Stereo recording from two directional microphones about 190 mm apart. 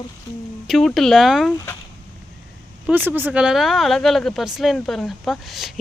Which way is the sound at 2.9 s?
10° right (ahead or behind).